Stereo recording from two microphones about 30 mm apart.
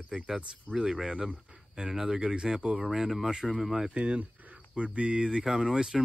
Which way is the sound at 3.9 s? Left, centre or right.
Right.